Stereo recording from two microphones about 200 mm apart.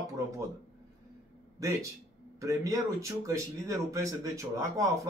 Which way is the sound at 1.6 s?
15° right (ahead or behind).